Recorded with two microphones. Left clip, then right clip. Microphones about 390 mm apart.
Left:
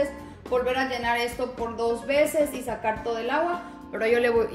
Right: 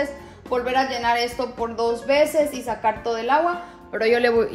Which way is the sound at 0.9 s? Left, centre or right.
Centre.